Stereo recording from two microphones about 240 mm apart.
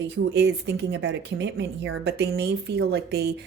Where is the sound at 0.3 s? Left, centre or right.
Right.